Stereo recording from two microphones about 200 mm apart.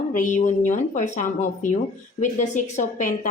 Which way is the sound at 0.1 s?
40° left (ahead or behind).